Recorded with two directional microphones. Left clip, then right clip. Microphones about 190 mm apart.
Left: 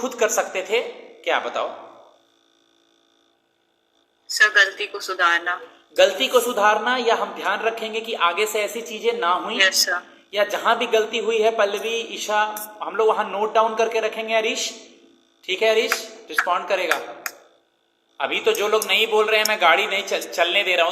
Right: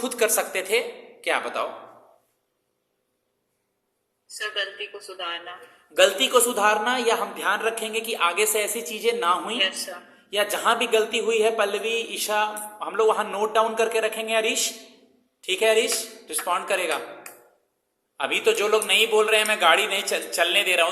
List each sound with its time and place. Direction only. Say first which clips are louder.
0.0 s a man's voice: left 2 dB; 20° right (ahead or behind)
4.3 s speech: left 13 dB; 35° left (ahead or behind)
6.0 s a man's voice: left 2 dB; 15° right (ahead or behind)
9.6 s speech: left 7 dB; 35° left (ahead or behind)
10.2 s a man's voice: left 2 dB; 15° right (ahead or behind)
18.2 s a man's voice: left 1 dB; 15° right (ahead or behind)